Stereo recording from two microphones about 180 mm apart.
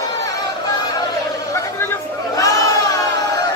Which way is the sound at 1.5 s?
15° left (ahead or behind).